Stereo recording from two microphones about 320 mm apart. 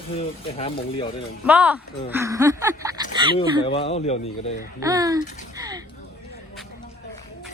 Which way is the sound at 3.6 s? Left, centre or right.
Centre.